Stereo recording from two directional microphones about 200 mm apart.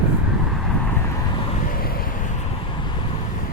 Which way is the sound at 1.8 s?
50° left (ahead or behind).